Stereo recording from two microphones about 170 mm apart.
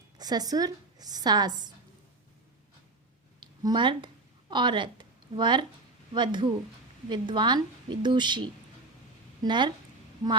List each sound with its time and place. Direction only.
0.2 s speech: 25° right (ahead or behind)
3.4 s a sound: 25° right (ahead or behind)
6.1 s speech: 25° right (ahead or behind)